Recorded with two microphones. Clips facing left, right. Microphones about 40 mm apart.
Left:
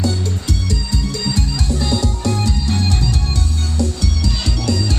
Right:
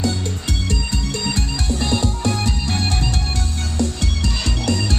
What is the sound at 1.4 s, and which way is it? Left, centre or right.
Music, right.